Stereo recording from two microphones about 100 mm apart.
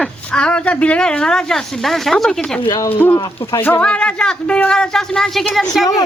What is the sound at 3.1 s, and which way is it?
Speech, 40° left (ahead or behind).